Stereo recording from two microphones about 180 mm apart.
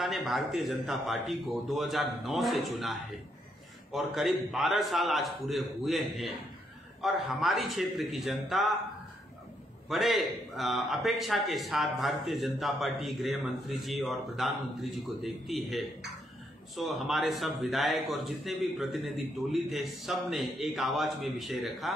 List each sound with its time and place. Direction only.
0.0 s a man's voice: centre (ahead or behind)
9.8 s a man's voice: centre (ahead or behind)